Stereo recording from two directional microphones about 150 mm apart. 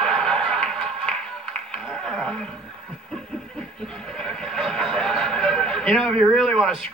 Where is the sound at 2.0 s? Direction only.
5° left (ahead or behind).